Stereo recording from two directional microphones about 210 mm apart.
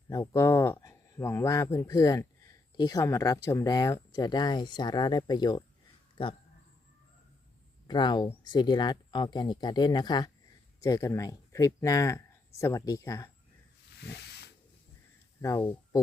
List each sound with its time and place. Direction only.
0.1 s speech: 15° left (ahead or behind)
7.9 s speech: 20° left (ahead or behind)
14.1 s hiss: 50° left (ahead or behind)
15.4 s speech: 15° left (ahead or behind)